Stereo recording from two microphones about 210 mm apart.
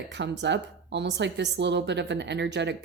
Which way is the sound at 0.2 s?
55° right (ahead or behind).